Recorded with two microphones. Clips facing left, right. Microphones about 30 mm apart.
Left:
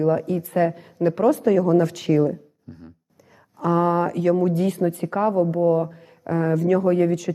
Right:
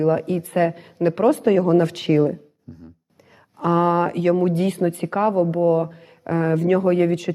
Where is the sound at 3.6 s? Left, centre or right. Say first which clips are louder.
Right 2 dB; right.